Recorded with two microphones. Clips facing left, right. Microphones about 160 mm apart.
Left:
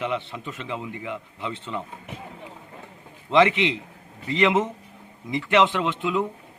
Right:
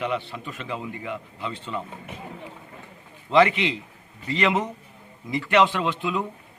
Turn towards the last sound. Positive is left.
turn(degrees=20)  # may be behind; listen again after turning